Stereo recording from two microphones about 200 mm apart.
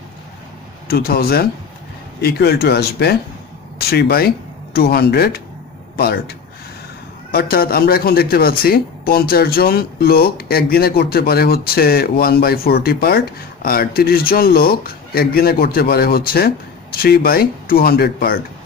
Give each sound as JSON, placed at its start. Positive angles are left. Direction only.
{"t": 0.8, "sound": "speech", "side_deg": 50}